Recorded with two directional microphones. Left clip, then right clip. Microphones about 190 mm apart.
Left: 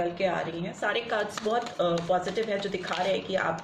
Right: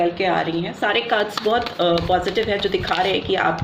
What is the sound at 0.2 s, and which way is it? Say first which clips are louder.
Speech: right 8 dB; 35° right (ahead or behind).